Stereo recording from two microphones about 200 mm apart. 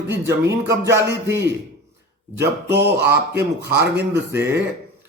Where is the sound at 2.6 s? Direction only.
55° right (ahead or behind).